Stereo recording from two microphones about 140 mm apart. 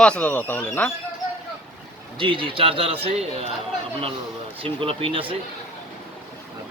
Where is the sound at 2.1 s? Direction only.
35° right (ahead or behind).